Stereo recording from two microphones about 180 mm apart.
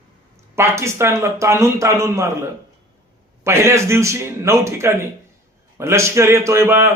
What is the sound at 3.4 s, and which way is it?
A man's voice, 15° right (ahead or behind).